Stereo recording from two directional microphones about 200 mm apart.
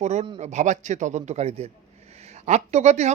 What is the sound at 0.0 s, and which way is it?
Speech, 35° right (ahead or behind).